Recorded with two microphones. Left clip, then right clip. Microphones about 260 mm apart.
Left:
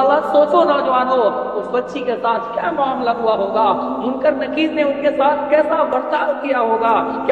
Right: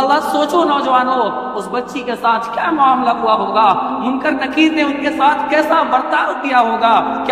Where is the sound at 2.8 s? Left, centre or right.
Right.